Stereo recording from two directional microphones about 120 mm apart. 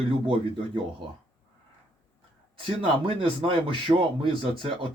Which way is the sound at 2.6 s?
45° right (ahead or behind).